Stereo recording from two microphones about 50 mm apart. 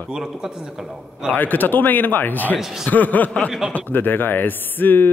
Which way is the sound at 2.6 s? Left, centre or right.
Centre.